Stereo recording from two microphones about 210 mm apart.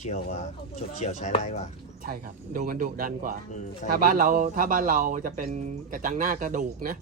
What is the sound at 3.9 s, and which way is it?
A man's voice, 40° right (ahead or behind).